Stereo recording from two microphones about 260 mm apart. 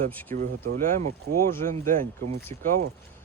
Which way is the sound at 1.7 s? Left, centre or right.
Right.